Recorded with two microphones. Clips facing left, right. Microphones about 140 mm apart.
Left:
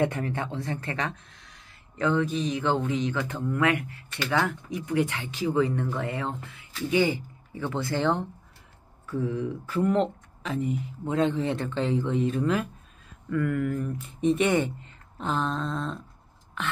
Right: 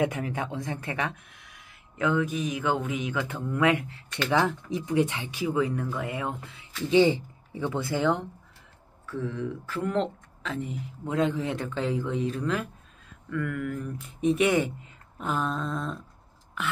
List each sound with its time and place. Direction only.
0.0 s speech: 10° right (ahead or behind)
6.2 s speech: 20° right (ahead or behind)
7.9 s speech: centre (ahead or behind)